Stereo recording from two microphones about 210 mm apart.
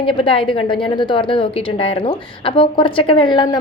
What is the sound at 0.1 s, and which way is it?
A woman's voice, 25° left (ahead or behind).